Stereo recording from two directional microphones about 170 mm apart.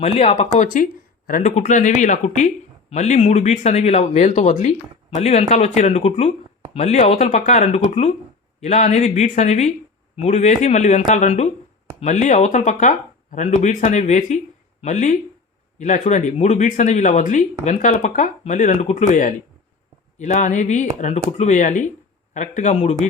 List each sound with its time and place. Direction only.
0.0 s speech: 40° left (ahead or behind)